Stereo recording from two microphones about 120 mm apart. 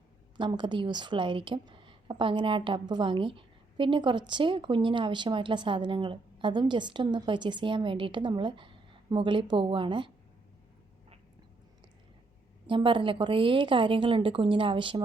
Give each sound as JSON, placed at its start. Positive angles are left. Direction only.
{"t": 0.3, "sound": "a woman's voice", "side_deg": -40}
{"t": 12.6, "sound": "a woman's voice", "side_deg": -45}